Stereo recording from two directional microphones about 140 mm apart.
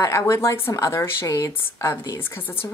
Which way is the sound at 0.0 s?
20° left (ahead or behind).